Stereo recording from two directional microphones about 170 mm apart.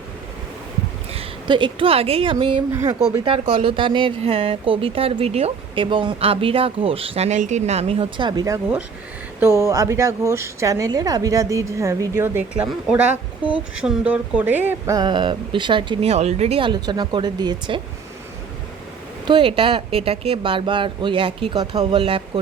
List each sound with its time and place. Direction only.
1.1 s speech: 30° right (ahead or behind)
19.2 s speech: 30° right (ahead or behind)